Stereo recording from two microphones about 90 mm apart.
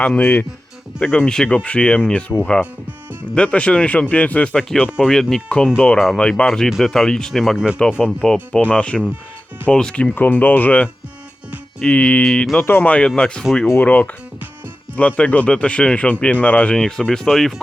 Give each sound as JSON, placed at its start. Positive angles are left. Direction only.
{"t": 0.0, "sound": "speech", "side_deg": 20}
{"t": 4.9, "sound": "speech", "side_deg": 0}
{"t": 6.7, "sound": "speech", "side_deg": 0}
{"t": 7.8, "sound": "speech", "side_deg": 15}
{"t": 12.6, "sound": "speech", "side_deg": 20}
{"t": 16.7, "sound": "speech", "side_deg": 5}